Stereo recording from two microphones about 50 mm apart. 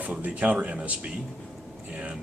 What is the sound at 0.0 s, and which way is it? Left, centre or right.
Speech, right.